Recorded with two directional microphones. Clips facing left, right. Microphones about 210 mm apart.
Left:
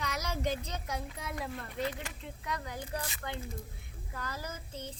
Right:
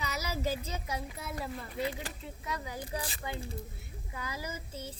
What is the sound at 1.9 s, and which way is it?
Speech, 35° right (ahead or behind).